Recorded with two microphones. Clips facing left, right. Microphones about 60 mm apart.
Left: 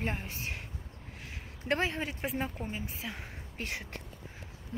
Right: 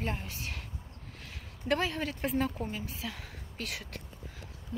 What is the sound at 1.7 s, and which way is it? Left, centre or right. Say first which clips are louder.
Speech: right 1 dB; left.